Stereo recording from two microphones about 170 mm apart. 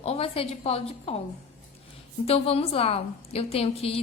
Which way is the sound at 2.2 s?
35° left (ahead or behind).